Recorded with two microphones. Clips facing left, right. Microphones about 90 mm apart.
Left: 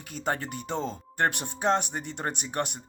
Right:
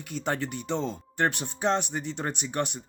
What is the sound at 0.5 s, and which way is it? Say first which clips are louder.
Speech: right 2 dB; 45° left (ahead or behind).